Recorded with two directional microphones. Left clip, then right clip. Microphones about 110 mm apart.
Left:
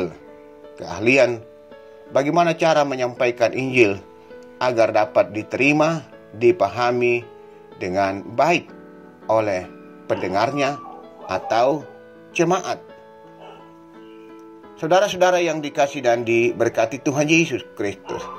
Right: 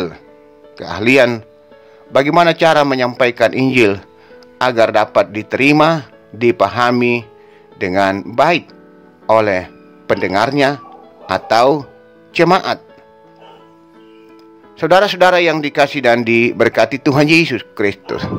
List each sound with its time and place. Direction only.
0.7 s speech: 40° right (ahead or behind)
14.8 s speech: 55° right (ahead or behind)